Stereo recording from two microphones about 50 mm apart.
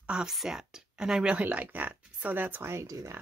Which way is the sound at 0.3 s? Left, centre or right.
Centre.